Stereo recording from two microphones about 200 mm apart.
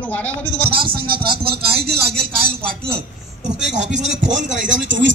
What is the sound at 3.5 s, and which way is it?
A man's voice, 60° right (ahead or behind).